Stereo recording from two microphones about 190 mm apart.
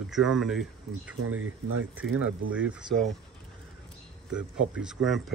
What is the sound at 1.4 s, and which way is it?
Speech, 90° right.